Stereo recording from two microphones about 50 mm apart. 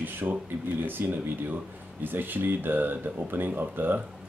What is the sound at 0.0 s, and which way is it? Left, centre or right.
Speech, right.